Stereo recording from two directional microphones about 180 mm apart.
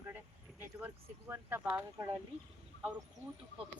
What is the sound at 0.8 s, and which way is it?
Speech, 15° right (ahead or behind).